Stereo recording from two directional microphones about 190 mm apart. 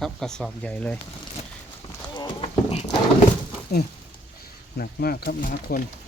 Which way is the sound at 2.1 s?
25° left (ahead or behind).